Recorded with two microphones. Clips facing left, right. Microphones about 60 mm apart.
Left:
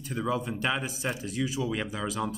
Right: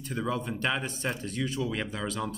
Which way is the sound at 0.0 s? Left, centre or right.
Centre.